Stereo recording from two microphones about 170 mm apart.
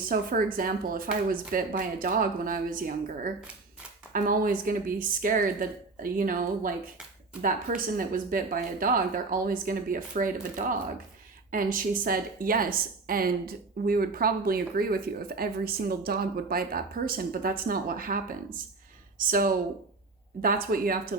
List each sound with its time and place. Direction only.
0.0 s a woman's voice: 55° right (ahead or behind)
4.1 s a woman's voice: 55° right (ahead or behind)
11.5 s a woman's voice: 55° right (ahead or behind)